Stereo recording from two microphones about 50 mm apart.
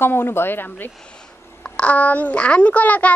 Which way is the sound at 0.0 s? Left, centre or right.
Left.